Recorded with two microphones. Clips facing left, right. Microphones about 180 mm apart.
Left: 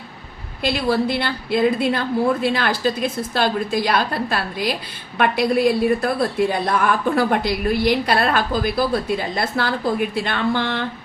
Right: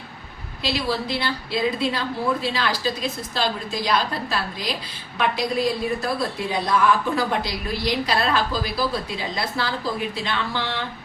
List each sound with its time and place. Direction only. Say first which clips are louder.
0.6 s a woman's voice: left 6 dB; 55° left (ahead or behind)